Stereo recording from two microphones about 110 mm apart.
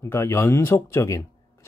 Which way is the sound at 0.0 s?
25° left (ahead or behind).